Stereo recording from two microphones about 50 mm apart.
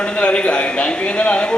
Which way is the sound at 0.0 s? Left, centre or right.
Left.